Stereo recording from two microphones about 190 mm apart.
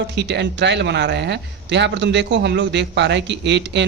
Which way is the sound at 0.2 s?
65° right (ahead or behind).